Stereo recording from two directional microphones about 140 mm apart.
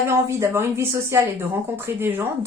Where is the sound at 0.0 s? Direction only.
20° right (ahead or behind).